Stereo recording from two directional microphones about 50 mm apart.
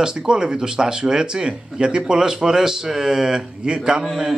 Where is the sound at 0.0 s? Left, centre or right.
Centre.